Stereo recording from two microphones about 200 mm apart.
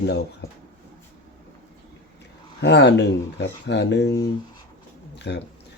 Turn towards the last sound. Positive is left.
turn(degrees=55)  # may be behind; listen again after turning